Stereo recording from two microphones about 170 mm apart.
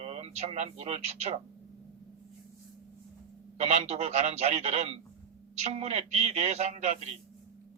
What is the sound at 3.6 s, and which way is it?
A man's voice, 40° right (ahead or behind).